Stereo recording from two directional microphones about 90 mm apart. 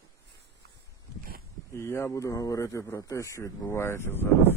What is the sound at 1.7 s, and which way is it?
Speech, 30° left (ahead or behind).